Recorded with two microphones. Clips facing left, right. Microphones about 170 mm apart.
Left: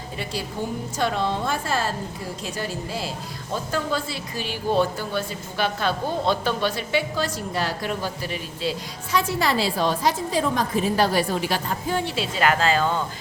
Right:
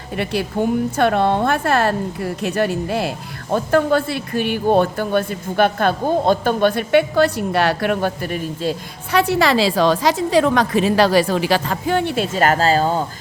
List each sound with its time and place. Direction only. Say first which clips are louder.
0.2 s speech: right 9 dB; 60° right (ahead or behind)
9.1 s a woman's voice: right 7 dB; 70° right (ahead or behind); by 13.1 s 40° right (ahead or behind)